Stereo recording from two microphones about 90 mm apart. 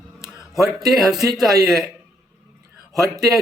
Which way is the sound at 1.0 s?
40° right (ahead or behind).